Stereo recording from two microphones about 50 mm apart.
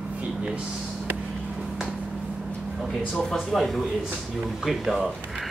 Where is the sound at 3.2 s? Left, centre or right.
Centre.